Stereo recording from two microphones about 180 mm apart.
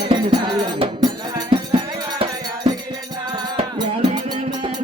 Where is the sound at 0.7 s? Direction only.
30° right (ahead or behind).